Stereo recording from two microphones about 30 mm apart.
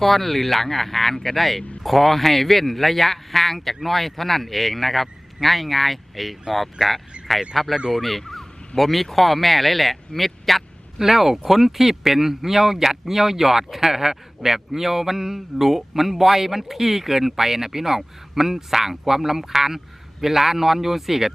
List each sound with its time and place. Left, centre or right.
0.0 s speech: centre
10.9 s speech: centre